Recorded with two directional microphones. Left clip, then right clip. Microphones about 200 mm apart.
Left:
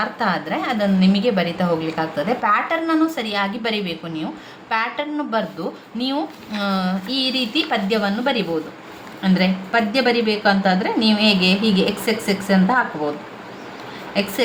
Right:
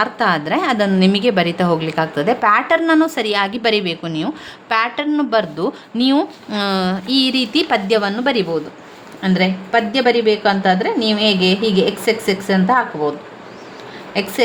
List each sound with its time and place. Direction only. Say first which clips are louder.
0.0 s a woman's voice: right 5 dB; 55° right (ahead or behind)
9.2 s a woman's voice: right 3 dB; 35° right (ahead or behind)
14.1 s a woman's voice: right 3 dB; 35° right (ahead or behind)